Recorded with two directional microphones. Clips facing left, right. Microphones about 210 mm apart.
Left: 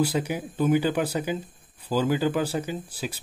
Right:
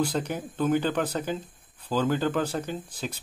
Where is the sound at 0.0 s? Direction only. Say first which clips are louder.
Left 2 dB; 10° left (ahead or behind).